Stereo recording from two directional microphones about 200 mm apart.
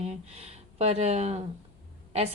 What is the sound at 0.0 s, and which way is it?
A woman's voice, 30° right (ahead or behind).